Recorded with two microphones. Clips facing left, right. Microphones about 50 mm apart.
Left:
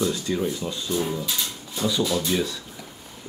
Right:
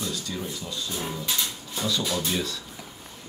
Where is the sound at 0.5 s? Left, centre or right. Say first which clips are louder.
Left 6 dB; left.